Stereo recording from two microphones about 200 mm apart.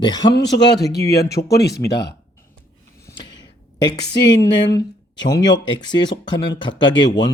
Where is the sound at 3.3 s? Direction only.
20° left (ahead or behind).